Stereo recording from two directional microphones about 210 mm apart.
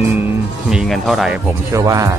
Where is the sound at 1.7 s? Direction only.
15° right (ahead or behind).